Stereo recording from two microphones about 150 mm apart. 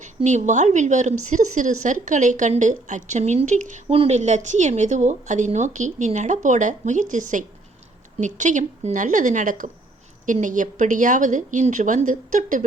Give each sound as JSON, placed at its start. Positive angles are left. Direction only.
{"t": 0.0, "sound": "a woman's voice", "side_deg": -50}